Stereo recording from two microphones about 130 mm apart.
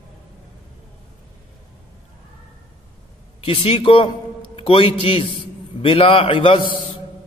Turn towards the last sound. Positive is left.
turn(degrees=40)  # may be behind; listen again after turning